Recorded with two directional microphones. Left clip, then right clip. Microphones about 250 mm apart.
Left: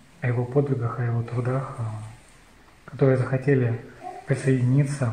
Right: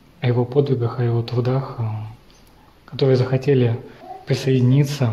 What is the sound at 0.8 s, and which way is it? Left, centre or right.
Speech, right.